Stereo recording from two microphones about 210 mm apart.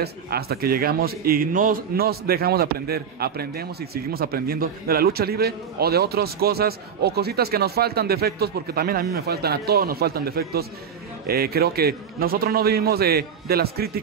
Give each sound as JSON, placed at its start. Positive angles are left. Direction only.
{"t": 0.0, "sound": "a man's voice", "side_deg": -50}